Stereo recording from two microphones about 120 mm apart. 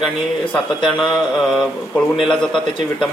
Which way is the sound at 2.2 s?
5° left (ahead or behind).